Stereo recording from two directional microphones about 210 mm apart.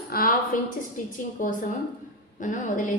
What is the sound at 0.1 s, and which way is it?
A woman's voice, 45° left (ahead or behind).